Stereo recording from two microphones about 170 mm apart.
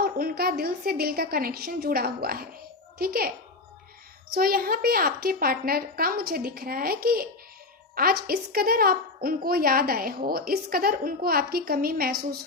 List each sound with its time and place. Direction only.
0.0 s a woman's voice: 60° right (ahead or behind)
4.4 s a woman's voice: 60° right (ahead or behind)